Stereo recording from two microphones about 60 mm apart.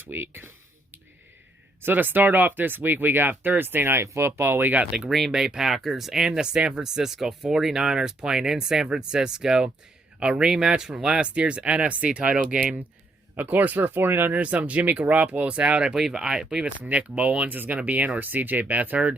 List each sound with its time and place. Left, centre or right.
0.1 s a sound: right
1.8 s speech: right
4.0 s speech: right
4.3 s speech: right
4.9 s speech: centre; by 14.3 s right
14.3 s speech: right